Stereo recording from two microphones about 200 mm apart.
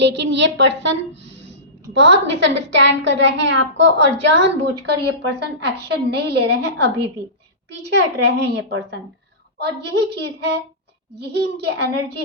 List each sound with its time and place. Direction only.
0.0 s a woman's voice: 65° right (ahead or behind)